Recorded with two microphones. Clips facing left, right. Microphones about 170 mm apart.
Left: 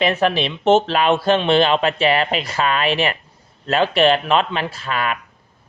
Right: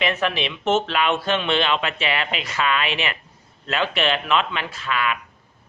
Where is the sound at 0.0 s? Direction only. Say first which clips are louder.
Left 5 dB; 35° left (ahead or behind).